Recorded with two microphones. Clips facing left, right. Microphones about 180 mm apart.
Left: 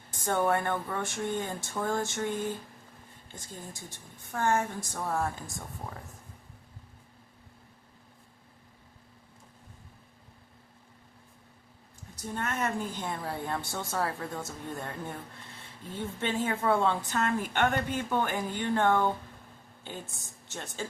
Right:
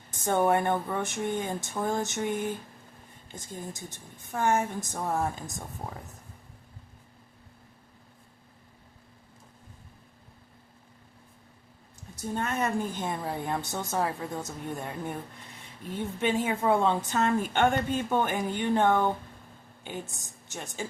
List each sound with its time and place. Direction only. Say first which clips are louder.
0.1 s a woman's voice: right 3 dB; 20° right (ahead or behind)
12.3 s a woman's voice: right 3 dB; 25° right (ahead or behind)